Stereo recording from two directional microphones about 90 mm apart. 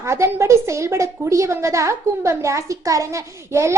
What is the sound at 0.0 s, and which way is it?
A woman's voice, 30° right (ahead or behind).